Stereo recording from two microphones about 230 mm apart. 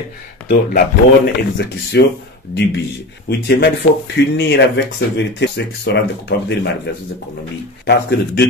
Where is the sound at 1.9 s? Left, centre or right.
Left.